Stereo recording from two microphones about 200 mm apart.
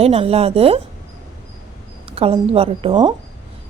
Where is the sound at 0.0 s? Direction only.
30° right (ahead or behind).